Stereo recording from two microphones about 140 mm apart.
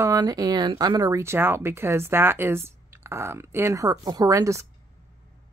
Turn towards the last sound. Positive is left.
turn(degrees=-20)  # may be behind; listen again after turning